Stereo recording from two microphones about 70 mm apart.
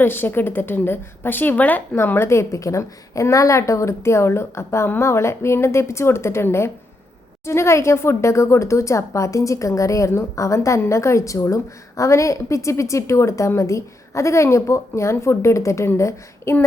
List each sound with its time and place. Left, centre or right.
0.0 s a woman's voice: left
2.2 s a woman's voice: left